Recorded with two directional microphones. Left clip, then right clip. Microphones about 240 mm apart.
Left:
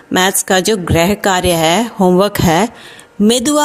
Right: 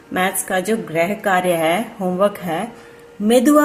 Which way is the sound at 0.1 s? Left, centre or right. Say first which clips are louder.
Left 7 dB; left.